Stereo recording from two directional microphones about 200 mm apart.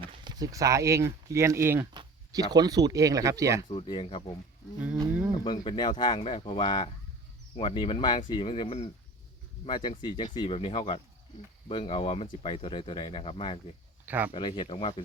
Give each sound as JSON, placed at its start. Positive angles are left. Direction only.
{"t": 0.0, "sound": "speech", "side_deg": -20}
{"t": 3.7, "sound": "speech", "side_deg": 25}
{"t": 4.9, "sound": "a sound", "side_deg": -5}
{"t": 5.4, "sound": "speech", "side_deg": 20}
{"t": 14.0, "sound": "speech", "side_deg": -10}
{"t": 14.3, "sound": "speech", "side_deg": 25}